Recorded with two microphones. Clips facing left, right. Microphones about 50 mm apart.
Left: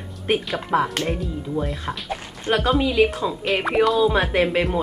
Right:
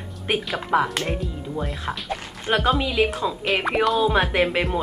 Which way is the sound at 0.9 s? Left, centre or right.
Centre.